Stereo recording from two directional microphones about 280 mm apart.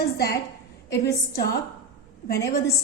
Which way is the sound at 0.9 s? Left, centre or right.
Left.